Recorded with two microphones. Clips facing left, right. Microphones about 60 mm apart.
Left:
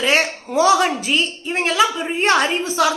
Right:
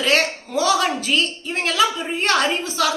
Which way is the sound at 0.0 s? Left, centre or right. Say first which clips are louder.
Left 1 dB; centre.